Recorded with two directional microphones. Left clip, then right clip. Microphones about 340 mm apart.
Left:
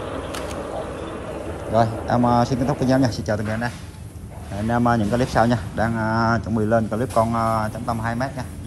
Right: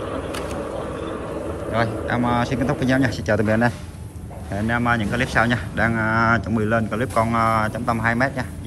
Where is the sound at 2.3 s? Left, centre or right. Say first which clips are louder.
Left 2 dB; centre.